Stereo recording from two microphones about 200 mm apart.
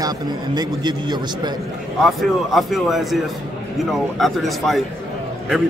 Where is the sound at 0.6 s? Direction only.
20° right (ahead or behind).